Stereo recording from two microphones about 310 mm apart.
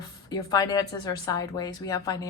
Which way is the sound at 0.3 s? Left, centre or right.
Centre.